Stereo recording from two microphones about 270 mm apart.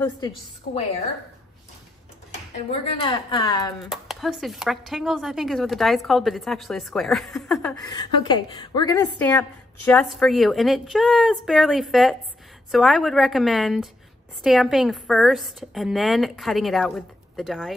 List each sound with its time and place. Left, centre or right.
2.7 s a woman's voice: left
3.8 s a woman's voice: centre
7.8 s a woman's voice: centre